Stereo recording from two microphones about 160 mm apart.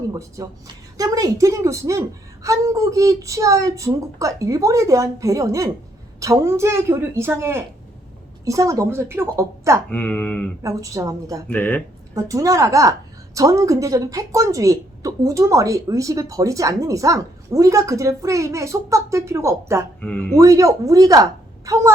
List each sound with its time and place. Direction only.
0.1 s a woman's voice: 20° right (ahead or behind)
9.9 s speech: 10° left (ahead or behind)
10.6 s a woman's voice: 20° right (ahead or behind)
11.4 s speech: 10° left (ahead or behind)
12.1 s a woman's voice: 20° right (ahead or behind)
20.0 s speech: 10° left (ahead or behind)
20.3 s a woman's voice: 20° right (ahead or behind)